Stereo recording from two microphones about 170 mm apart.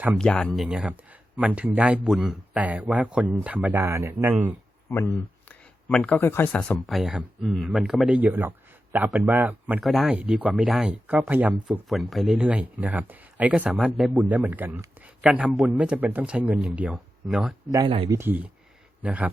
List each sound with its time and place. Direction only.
0.2 s speech: 5° left (ahead or behind); by 4.5 s 10° right (ahead or behind)
4.9 s speech: 15° left (ahead or behind); by 11.5 s 10° right (ahead or behind)
11.7 s speech: centre (ahead or behind)
17.7 s speech: 25° right (ahead or behind)
18.1 s speech: 10° right (ahead or behind)